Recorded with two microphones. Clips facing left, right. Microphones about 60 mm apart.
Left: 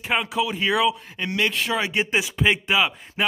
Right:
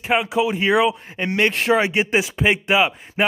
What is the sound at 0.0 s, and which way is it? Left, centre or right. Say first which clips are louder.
Speech: right 4 dB; centre.